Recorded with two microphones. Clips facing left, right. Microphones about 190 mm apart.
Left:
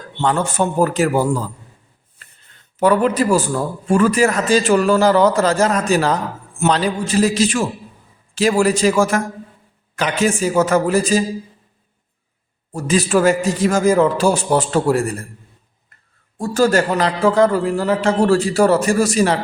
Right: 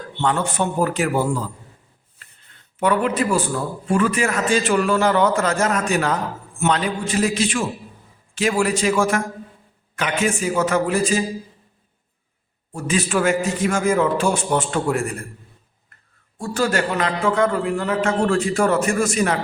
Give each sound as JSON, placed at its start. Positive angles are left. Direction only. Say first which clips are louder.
{"t": 0.2, "sound": "a man's voice", "louder": "left 3 dB", "side_deg": 40}
{"t": 2.7, "sound": "a man's voice", "louder": "left 4 dB", "side_deg": 40}
{"t": 12.7, "sound": "a man's voice", "louder": "left 5 dB", "side_deg": 40}
{"t": 16.4, "sound": "a man's voice", "louder": "left 6 dB", "side_deg": 40}